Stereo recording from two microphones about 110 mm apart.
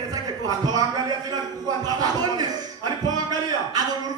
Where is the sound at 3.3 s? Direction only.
35° right (ahead or behind).